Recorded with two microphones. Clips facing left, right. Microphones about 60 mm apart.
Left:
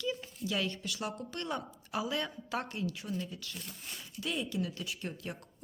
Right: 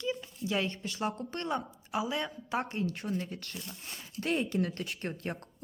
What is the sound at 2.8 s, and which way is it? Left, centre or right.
Speech, right.